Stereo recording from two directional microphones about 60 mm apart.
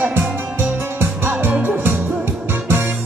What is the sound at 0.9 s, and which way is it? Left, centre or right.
Music, right.